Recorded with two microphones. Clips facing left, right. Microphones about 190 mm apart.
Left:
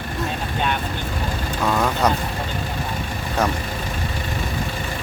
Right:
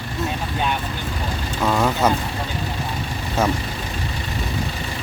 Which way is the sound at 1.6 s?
5° right (ahead or behind).